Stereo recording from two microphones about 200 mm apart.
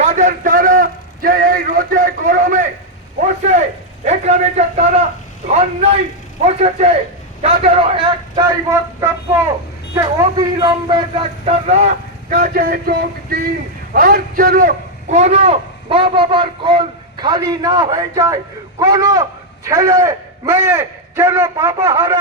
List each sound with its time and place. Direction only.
0.0 s a man's voice: 35° right (ahead or behind)
9.9 s a man's voice: 20° right (ahead or behind)